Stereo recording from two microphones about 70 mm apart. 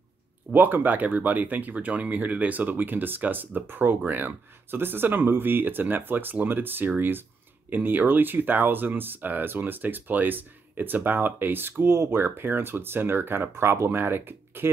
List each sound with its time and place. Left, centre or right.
0.5 s speech: right